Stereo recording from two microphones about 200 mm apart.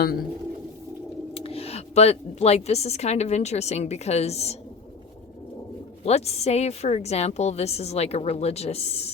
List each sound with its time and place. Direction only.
1.3 s a woman's voice: 30° left (ahead or behind)
6.1 s a woman's voice: 30° left (ahead or behind)